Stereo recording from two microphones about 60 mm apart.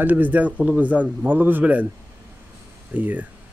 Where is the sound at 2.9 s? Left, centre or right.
Right.